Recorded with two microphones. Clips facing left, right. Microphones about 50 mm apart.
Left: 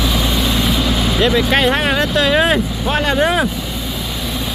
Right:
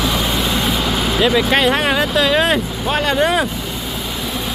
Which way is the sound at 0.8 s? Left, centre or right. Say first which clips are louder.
Left 1 dB; right.